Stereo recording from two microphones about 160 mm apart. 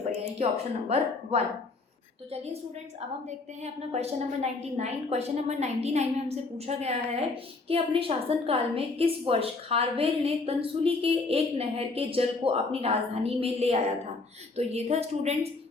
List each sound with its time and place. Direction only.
0.3 s a woman's voice: 40° right (ahead or behind)